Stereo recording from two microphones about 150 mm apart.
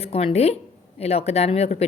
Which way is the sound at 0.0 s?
40° left (ahead or behind).